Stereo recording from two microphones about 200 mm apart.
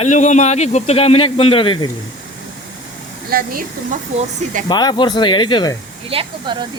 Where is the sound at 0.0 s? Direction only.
35° left (ahead or behind).